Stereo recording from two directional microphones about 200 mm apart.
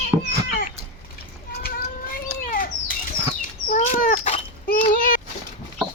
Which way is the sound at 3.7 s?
40° left (ahead or behind).